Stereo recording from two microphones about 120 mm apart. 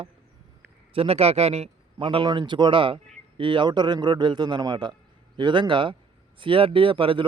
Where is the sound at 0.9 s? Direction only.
55° right (ahead or behind).